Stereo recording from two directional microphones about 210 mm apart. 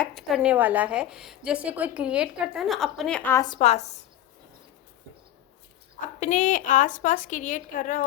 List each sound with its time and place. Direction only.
0.0 s a woman's voice: centre (ahead or behind)
3.6 s a woman's voice: 30° left (ahead or behind)
6.1 s a woman's voice: 35° left (ahead or behind)